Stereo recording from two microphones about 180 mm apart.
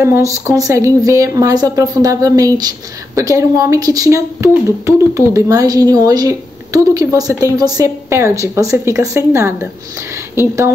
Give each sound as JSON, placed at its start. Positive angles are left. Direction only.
{"t": 0.0, "sound": "speech", "side_deg": -15}